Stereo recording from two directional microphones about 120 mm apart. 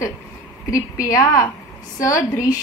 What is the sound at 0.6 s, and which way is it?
A woman's voice, 25° left (ahead or behind).